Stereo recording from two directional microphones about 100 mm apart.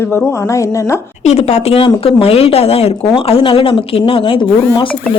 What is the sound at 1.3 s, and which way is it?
Speech, 90° left.